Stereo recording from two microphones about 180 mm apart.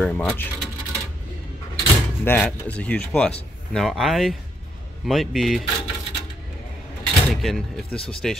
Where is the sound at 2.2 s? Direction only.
10° left (ahead or behind).